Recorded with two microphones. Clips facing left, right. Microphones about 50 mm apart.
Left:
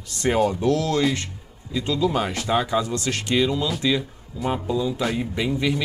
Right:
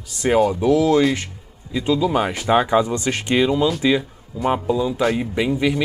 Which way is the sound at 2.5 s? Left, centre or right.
Right.